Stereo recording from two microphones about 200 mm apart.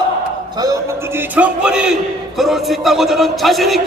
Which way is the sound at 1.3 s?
5° right (ahead or behind).